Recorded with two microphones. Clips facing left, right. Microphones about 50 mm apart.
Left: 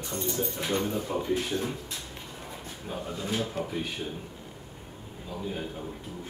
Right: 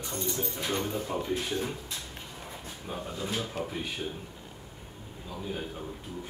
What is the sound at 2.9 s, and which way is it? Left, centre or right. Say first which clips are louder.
Speech: left 2 dB; centre.